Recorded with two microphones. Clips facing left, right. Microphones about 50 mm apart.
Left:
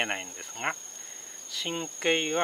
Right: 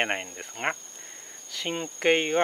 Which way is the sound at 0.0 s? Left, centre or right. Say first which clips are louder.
Right 3 dB; right.